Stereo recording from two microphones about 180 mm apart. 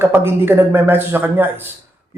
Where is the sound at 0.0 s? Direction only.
15° right (ahead or behind).